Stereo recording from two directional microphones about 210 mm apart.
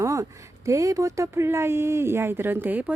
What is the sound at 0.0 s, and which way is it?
Speech, 15° right (ahead or behind).